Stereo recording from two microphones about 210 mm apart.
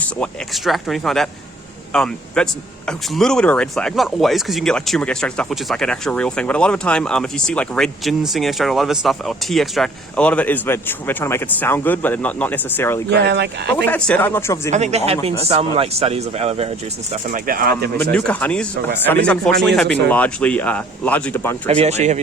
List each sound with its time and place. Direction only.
0.0 s speech: 5° left (ahead or behind)
13.1 s speech: 55° right (ahead or behind)
13.8 s speech: 10° left (ahead or behind)
14.7 s speech: 30° right (ahead or behind)
18.1 s speech: 5° left (ahead or behind)
21.7 s speech: 30° right (ahead or behind)